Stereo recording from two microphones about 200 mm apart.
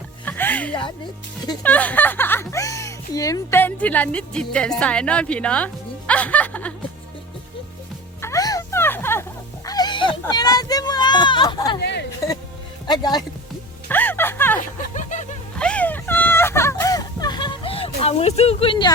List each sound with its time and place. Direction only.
0.3 s music: 10° left (ahead or behind)
0.7 s a man's voice: 25° left (ahead or behind)
1.6 s speech: 5° left (ahead or behind)
8.2 s music: 15° left (ahead or behind)
9.6 s speech: 20° left (ahead or behind)
11.8 s speech: 55° left (ahead or behind)
12.9 s a man's voice: 20° left (ahead or behind)
13.8 s a sound: 10° left (ahead or behind)
14.6 s chuckle: 40° left (ahead or behind)
15.5 s a sound: 5° left (ahead or behind); by 18.9 s 25° left (ahead or behind)